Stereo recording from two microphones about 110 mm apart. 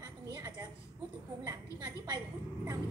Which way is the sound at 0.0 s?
30° right (ahead or behind).